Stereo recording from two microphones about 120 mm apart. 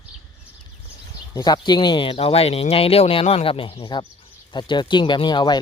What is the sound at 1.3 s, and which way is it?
Speech, 35° left (ahead or behind).